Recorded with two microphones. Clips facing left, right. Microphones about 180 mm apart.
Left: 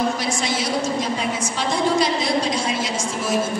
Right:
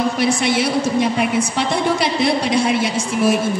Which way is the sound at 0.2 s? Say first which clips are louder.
Right 7 dB; 60° right (ahead or behind).